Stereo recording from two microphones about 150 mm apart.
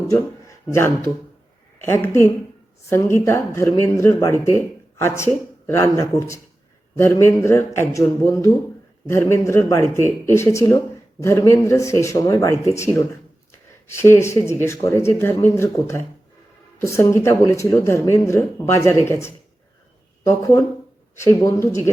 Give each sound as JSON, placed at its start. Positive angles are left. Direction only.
{"t": 0.1, "sound": "speech", "side_deg": 20}